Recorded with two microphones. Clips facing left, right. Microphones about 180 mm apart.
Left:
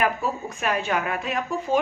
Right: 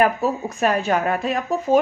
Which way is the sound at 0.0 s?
40° right (ahead or behind).